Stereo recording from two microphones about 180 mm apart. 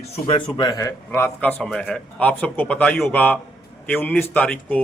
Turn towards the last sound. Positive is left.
turn(degrees=10)  # may be behind; listen again after turning